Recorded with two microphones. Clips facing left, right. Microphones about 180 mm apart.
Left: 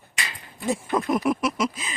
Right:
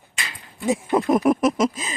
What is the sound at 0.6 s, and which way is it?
Speech, 15° right (ahead or behind).